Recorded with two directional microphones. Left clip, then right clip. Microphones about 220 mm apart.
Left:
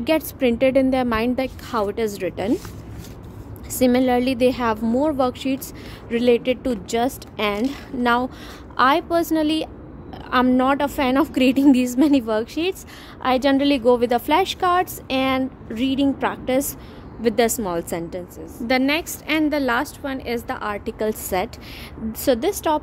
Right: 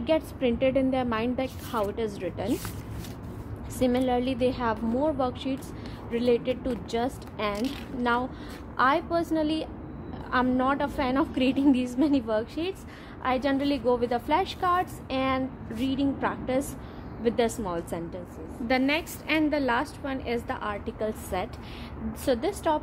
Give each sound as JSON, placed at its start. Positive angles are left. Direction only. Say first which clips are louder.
{"t": 0.0, "sound": "a woman's voice", "louder": "left 6 dB", "side_deg": 50}
{"t": 3.8, "sound": "a woman's voice", "louder": "left 7 dB", "side_deg": 50}